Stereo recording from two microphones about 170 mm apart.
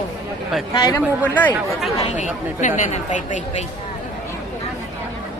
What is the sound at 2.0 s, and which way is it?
Speech, 45° left (ahead or behind).